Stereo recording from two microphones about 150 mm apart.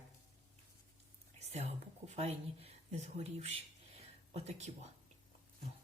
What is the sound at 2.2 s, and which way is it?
Speech, 45° right (ahead or behind).